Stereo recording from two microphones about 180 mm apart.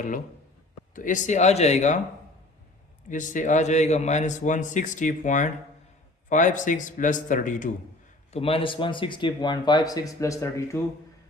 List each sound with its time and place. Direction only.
0.9 s speech: 45° left (ahead or behind)
3.1 s a man's voice: 45° left (ahead or behind)
8.3 s speech: 30° left (ahead or behind); by 10.8 s 15° left (ahead or behind)